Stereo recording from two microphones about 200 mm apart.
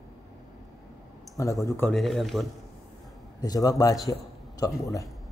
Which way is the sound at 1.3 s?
15° left (ahead or behind).